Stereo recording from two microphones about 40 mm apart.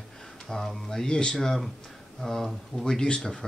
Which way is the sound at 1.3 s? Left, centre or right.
Centre.